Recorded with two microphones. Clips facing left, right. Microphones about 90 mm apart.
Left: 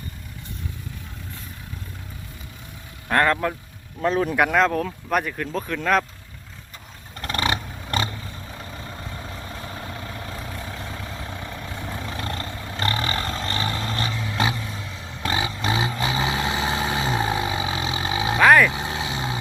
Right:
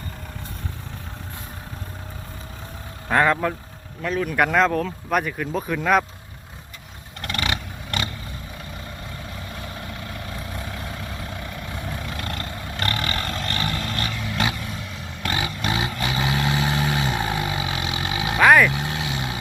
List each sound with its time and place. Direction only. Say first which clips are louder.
3.1 s speech: right 1 dB; 5° right (ahead or behind)
4.0 s speech: left 3 dB; 35° left (ahead or behind)
4.4 s speech: right 4 dB; centre (ahead or behind)
7.2 s vehicle: left 2 dB; 35° left (ahead or behind)
18.3 s vehicle: even; centre (ahead or behind)
18.7 s vehicle: even; 25° left (ahead or behind)